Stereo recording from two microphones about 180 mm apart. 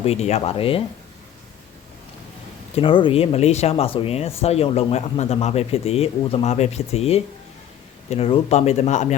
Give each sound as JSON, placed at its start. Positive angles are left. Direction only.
{"t": 0.0, "sound": "speech", "side_deg": 35}
{"t": 2.7, "sound": "speech", "side_deg": 30}